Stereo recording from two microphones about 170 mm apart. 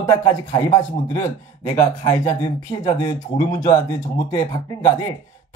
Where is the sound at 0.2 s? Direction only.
20° left (ahead or behind).